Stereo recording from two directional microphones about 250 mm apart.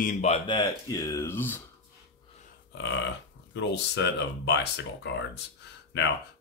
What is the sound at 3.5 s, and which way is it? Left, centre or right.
Speech, left.